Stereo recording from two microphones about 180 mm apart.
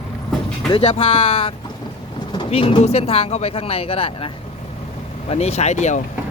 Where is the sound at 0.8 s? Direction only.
35° left (ahead or behind).